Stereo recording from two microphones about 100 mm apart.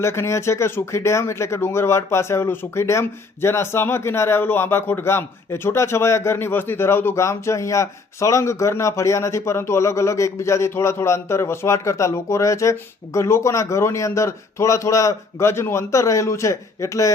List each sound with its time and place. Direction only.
0.0 s speech: 30° left (ahead or behind)